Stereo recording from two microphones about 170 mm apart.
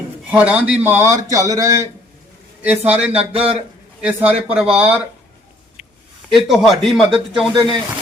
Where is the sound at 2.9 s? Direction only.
5° right (ahead or behind).